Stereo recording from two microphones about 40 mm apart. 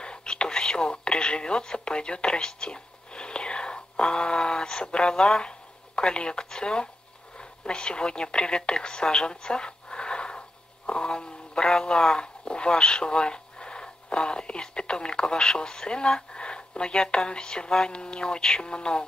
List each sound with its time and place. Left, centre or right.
0.0 s speech: left